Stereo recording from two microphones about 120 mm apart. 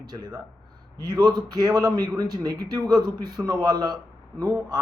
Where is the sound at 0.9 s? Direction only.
35° right (ahead or behind).